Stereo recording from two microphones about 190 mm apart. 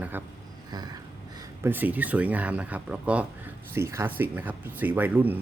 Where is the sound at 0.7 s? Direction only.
20° right (ahead or behind).